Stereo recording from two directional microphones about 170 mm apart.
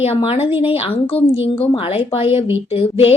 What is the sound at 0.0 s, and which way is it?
Speech, 35° left (ahead or behind).